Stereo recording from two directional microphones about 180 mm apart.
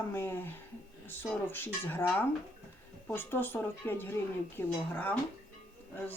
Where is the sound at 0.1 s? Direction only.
15° left (ahead or behind).